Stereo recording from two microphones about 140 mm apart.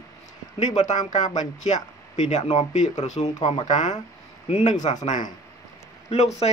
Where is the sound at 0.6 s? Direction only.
55° left (ahead or behind).